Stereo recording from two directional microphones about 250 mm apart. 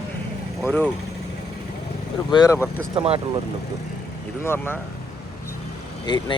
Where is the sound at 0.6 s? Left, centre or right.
Centre.